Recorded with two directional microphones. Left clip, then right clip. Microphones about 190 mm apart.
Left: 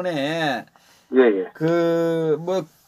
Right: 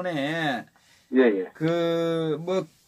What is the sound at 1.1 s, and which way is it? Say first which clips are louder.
Speech: left 4 dB; 25° left (ahead or behind).